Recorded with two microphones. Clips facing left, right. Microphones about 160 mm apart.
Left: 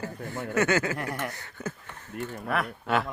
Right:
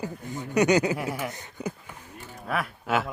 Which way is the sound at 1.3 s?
15° right (ahead or behind).